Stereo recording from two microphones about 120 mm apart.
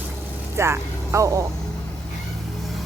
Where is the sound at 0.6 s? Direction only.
20° right (ahead or behind).